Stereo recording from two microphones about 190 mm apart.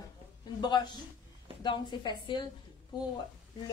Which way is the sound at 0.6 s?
20° left (ahead or behind).